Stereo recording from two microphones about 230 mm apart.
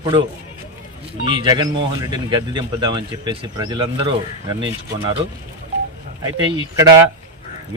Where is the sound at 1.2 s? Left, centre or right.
Centre.